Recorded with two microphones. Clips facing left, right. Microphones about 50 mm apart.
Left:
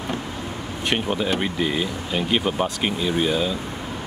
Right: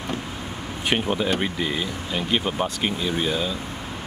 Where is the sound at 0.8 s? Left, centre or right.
Centre.